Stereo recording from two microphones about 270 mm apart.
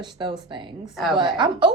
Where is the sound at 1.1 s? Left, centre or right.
Centre.